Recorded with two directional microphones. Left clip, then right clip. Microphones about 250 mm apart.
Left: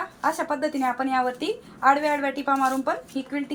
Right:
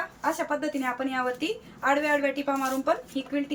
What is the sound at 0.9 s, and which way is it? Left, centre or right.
Speech, centre.